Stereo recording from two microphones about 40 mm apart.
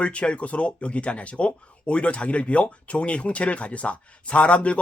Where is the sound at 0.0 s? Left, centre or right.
Left.